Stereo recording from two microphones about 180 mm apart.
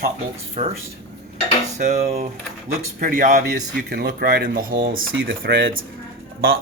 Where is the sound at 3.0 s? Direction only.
50° right (ahead or behind).